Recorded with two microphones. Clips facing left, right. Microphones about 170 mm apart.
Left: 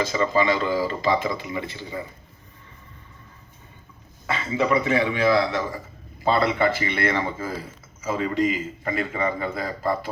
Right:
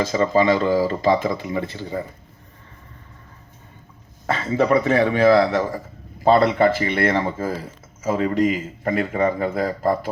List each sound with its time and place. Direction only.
0.0 s speech: 45° right (ahead or behind)
4.3 s speech: 45° right (ahead or behind)